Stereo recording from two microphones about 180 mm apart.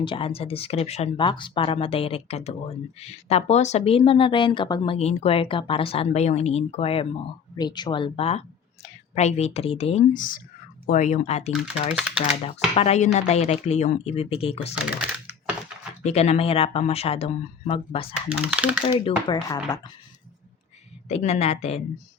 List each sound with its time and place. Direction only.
0.0 s speech: 30° left (ahead or behind)
16.0 s speech: 40° left (ahead or behind)
18.1 s speech: 5° right (ahead or behind)
18.9 s speech: 30° left (ahead or behind)
21.1 s speech: 35° left (ahead or behind)